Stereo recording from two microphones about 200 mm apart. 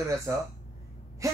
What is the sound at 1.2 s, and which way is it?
Gasp, 15° right (ahead or behind).